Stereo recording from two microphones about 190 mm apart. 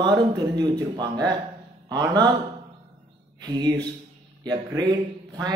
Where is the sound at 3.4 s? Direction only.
20° right (ahead or behind).